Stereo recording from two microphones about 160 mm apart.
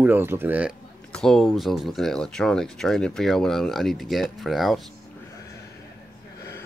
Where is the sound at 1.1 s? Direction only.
5° left (ahead or behind).